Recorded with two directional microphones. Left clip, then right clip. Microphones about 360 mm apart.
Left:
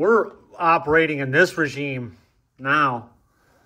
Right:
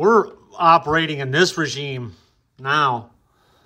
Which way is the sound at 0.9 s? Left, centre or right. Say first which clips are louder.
Left 2 dB; centre.